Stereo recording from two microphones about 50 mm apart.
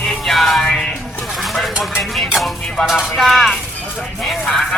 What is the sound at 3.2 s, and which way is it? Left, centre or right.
Speech, centre.